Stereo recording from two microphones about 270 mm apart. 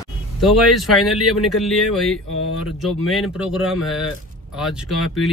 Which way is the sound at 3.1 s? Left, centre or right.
Centre.